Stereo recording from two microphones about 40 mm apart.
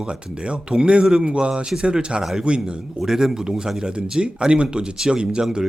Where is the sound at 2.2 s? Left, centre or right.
Centre.